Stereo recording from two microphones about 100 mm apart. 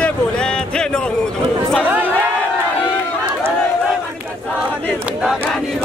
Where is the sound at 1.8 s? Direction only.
15° right (ahead or behind).